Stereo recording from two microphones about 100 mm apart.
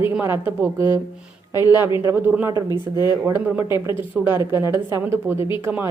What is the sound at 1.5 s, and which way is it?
Speech, 40° left (ahead or behind).